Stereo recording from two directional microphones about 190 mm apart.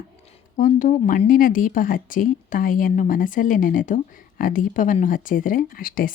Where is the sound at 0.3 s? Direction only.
40° left (ahead or behind).